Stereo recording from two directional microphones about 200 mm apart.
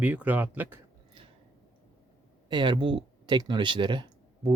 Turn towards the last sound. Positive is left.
turn(degrees=-25)  # may be behind; listen again after turning